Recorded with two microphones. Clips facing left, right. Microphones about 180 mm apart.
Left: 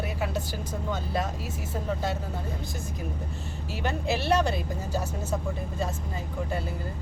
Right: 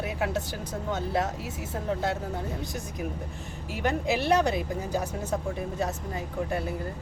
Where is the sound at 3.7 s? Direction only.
15° right (ahead or behind).